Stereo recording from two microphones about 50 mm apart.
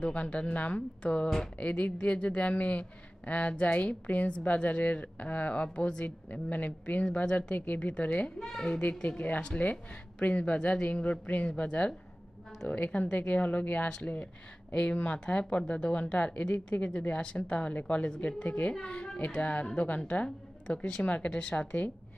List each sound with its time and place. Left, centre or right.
0.0 s speech: left
6.0 s speech: left
8.4 s a child's voice: centre
9.0 s a woman's voice: left